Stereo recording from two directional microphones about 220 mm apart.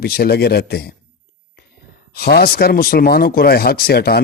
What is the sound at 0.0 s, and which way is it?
Speech, 45° left (ahead or behind).